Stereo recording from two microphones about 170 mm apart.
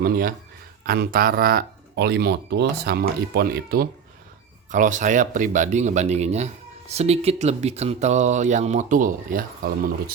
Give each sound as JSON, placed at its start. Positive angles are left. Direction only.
{"t": 0.0, "sound": "speech", "side_deg": -55}
{"t": 4.7, "sound": "speech", "side_deg": -45}